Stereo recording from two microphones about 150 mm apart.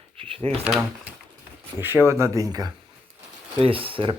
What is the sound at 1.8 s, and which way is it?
Speech, 15° right (ahead or behind).